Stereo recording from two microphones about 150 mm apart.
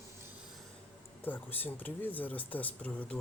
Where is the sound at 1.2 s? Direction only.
10° left (ahead or behind).